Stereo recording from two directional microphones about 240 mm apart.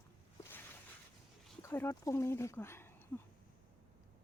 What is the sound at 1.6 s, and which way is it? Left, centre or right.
Speech, centre.